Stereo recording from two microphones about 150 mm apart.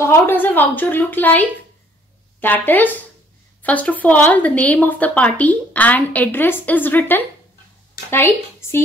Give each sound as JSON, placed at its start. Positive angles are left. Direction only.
{"t": 0.0, "sound": "speech", "side_deg": 15}
{"t": 2.4, "sound": "speech", "side_deg": 10}